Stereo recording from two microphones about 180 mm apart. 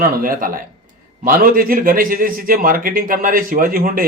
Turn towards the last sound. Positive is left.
turn(degrees=-50)  # may be behind; listen again after turning